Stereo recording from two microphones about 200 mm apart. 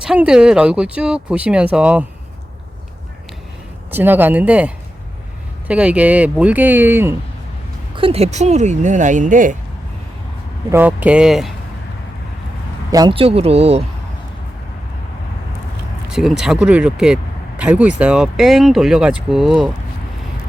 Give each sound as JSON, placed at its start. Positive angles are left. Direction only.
{"t": 0.0, "sound": "speech", "side_deg": -5}
{"t": 3.9, "sound": "speech", "side_deg": -10}
{"t": 7.9, "sound": "speech", "side_deg": -30}
{"t": 10.7, "sound": "speech", "side_deg": -10}
{"t": 12.9, "sound": "speech", "side_deg": -20}
{"t": 16.0, "sound": "speech", "side_deg": -5}